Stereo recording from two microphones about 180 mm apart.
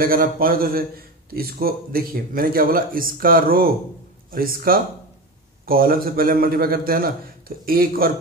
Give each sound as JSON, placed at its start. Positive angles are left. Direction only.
{"t": 0.0, "sound": "a man's voice", "side_deg": -55}